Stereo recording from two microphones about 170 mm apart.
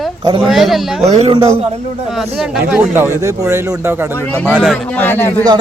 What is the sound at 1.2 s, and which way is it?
Speech, 35° right (ahead or behind).